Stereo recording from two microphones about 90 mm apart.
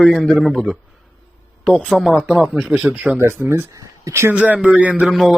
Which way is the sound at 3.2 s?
25° right (ahead or behind).